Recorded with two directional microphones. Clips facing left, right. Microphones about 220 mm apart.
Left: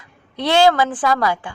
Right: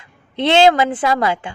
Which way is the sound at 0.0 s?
25° right (ahead or behind).